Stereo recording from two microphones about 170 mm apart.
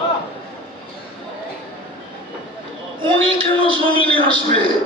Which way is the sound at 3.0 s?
30° right (ahead or behind).